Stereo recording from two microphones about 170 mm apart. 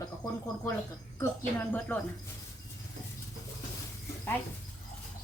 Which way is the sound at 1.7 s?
10° left (ahead or behind).